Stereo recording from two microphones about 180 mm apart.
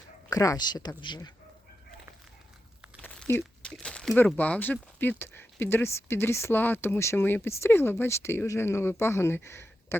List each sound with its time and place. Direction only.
0.3 s speech: 20° left (ahead or behind)
3.0 s crumpling: 10° left (ahead or behind)
4.3 s speech: 5° left (ahead or behind)